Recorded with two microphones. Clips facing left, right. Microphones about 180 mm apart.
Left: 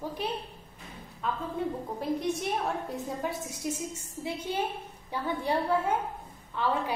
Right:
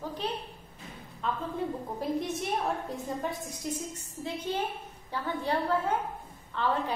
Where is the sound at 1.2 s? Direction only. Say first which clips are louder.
Even; 5° left (ahead or behind).